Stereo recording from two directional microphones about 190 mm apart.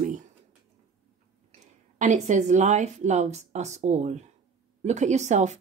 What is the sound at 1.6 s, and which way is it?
A woman's voice, 40° right (ahead or behind).